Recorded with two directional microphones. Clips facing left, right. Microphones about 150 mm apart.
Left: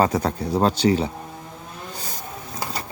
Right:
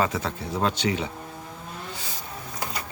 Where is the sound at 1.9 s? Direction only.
40° left (ahead or behind).